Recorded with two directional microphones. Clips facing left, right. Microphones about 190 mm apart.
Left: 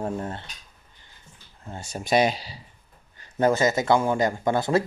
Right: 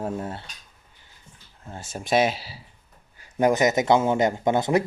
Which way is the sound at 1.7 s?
Centre (ahead or behind).